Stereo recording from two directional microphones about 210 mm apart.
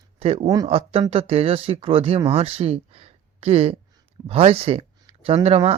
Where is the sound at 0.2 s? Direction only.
25° right (ahead or behind).